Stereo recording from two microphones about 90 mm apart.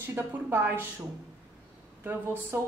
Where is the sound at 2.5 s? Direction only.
25° right (ahead or behind).